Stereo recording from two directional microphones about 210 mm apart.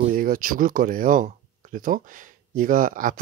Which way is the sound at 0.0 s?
40° right (ahead or behind).